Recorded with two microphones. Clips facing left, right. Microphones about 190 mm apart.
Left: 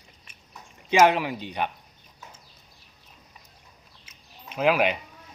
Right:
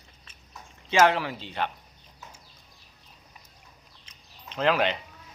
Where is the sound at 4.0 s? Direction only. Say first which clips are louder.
Left 2 dB; 10° left (ahead or behind).